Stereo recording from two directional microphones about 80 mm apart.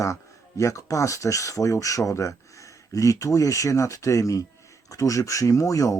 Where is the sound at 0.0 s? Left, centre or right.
Left.